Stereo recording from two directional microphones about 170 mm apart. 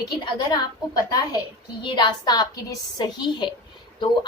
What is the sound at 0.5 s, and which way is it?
A woman's voice, 25° left (ahead or behind).